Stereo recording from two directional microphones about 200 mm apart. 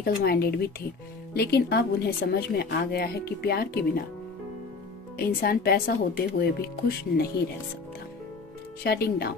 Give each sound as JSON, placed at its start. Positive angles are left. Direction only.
{"t": 0.0, "sound": "speech", "side_deg": 50}
{"t": 5.1, "sound": "speech", "side_deg": 50}
{"t": 8.8, "sound": "speech", "side_deg": 55}